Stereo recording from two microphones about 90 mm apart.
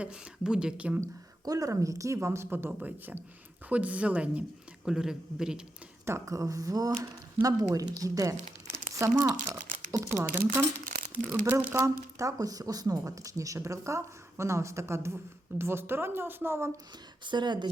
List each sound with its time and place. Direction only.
0.0 s speech: 10° right (ahead or behind)
1.0 s speech: 40° right (ahead or behind); by 5.6 s 5° right (ahead or behind)
6.1 s speech: 35° right (ahead or behind)
11.1 s speech: 15° right (ahead or behind)
11.5 s speech: 30° right (ahead or behind)
17.2 s speech: 55° right (ahead or behind)